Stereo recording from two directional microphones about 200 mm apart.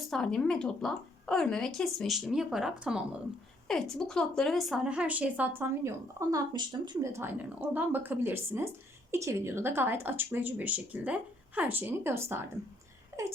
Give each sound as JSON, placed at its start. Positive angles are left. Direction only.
{"t": 0.1, "sound": "a woman's voice", "side_deg": 0}